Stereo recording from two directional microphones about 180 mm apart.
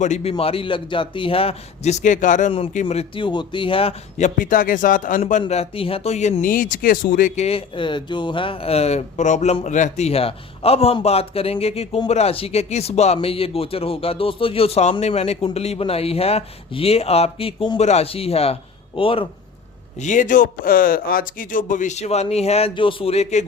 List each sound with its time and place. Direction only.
0.0 s speech: 40° left (ahead or behind)
2.5 s speech: 30° left (ahead or behind)
4.4 s speech: 50° left (ahead or behind)
5.4 s speech: 35° left (ahead or behind)
20.0 s speech: 45° left (ahead or behind)